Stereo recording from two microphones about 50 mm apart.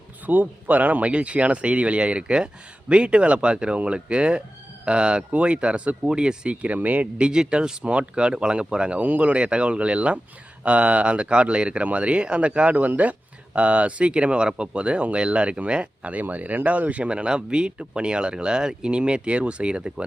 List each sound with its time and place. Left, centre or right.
0.3 s speech: right
7.2 s speech: centre